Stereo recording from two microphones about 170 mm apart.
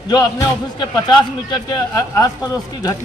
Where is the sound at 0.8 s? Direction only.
25° left (ahead or behind).